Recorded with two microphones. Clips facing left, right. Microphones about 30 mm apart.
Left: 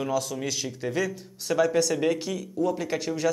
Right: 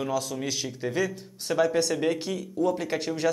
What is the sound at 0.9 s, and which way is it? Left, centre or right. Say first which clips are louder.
Speech: right 1 dB; centre.